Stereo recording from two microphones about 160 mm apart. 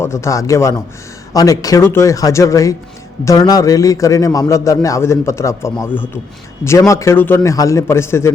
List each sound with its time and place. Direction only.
0.0 s a man's voice: 20° left (ahead or behind)